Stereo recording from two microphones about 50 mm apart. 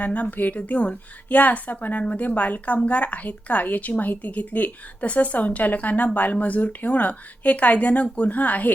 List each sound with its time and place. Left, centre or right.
0.0 s a woman's voice: left